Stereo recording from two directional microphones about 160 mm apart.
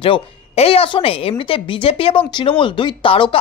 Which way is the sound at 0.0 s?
35° left (ahead or behind).